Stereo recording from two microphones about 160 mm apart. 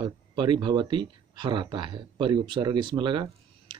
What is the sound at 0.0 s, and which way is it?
Speech, 30° right (ahead or behind).